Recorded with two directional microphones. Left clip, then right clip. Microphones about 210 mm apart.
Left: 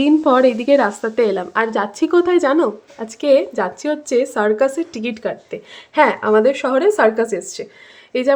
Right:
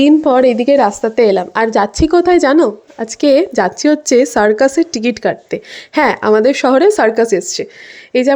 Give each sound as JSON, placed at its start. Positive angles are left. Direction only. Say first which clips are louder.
{"t": 0.0, "sound": "a woman's voice", "louder": "right 4 dB", "side_deg": -20}